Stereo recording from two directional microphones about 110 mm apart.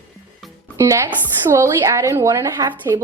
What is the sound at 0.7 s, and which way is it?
Speech, 30° right (ahead or behind).